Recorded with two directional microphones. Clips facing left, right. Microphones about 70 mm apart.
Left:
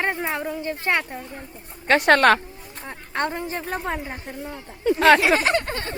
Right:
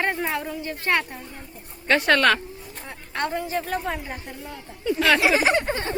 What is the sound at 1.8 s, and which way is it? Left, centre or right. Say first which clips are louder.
A woman's voice: left 3 dB; left.